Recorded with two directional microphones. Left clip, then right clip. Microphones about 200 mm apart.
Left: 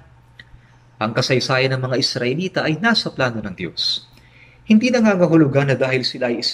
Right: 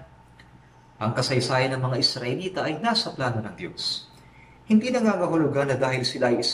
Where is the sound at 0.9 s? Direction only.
50° left (ahead or behind).